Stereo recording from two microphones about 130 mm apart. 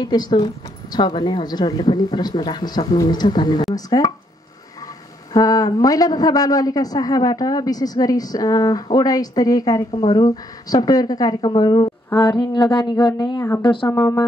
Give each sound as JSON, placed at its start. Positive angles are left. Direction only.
{"t": 0.0, "sound": "a man's voice", "side_deg": 30}
{"t": 5.3, "sound": "a man's voice", "side_deg": 30}
{"t": 13.8, "sound": "a man's voice", "side_deg": 25}